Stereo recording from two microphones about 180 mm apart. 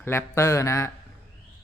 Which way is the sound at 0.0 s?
15° left (ahead or behind).